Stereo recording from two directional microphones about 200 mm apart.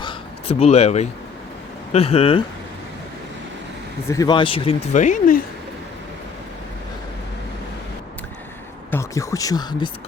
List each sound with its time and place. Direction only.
0.0 s a sound: 25° left (ahead or behind)
1.9 s speech: 30° left (ahead or behind)
4.1 s speech: 20° left (ahead or behind); by 5.4 s 40° left (ahead or behind)
8.9 s speech: 15° left (ahead or behind)